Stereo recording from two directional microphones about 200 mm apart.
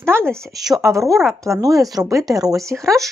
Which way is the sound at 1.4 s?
15° right (ahead or behind).